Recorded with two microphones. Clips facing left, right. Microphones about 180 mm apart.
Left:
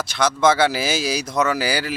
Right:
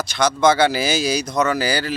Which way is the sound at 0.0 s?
5° left (ahead or behind).